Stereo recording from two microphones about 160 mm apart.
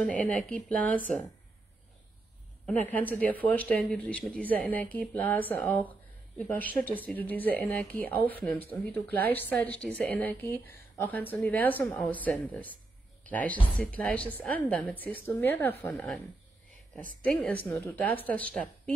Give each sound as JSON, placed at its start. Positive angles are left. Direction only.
{"t": 0.0, "sound": "speech", "side_deg": 5}
{"t": 2.6, "sound": "speech", "side_deg": 10}
{"t": 17.2, "sound": "speech", "side_deg": 5}